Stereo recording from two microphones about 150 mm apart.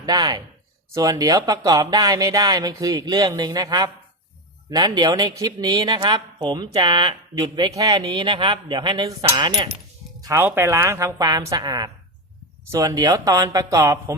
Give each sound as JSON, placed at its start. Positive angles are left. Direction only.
{"t": 0.0, "sound": "a woman's voice", "side_deg": -25}
{"t": 10.2, "sound": "a woman's voice", "side_deg": -25}